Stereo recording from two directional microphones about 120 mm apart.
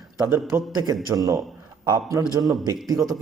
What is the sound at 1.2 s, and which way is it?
A man's voice, 30° right (ahead or behind).